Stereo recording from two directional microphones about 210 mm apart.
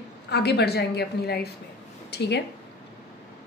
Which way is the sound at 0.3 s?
50° left (ahead or behind).